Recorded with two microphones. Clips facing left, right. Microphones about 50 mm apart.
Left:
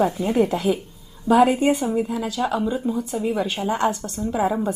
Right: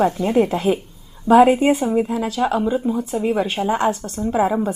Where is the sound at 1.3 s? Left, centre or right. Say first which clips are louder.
Right 4 dB; right.